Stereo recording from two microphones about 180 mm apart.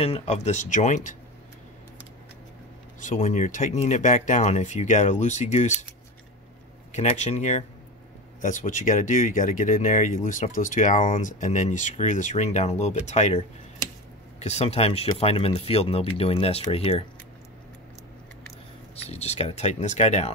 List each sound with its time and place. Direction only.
0.0 s speech: 35° left (ahead or behind)
3.0 s speech: 40° left (ahead or behind)
6.9 s speech: 40° left (ahead or behind)
19.0 s speech: 35° left (ahead or behind)